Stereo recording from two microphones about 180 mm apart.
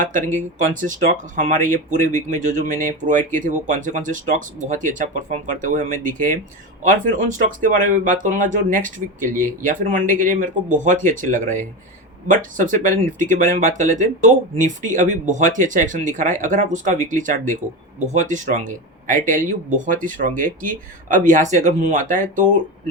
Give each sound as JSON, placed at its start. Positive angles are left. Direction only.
{"t": 0.0, "sound": "speech", "side_deg": -45}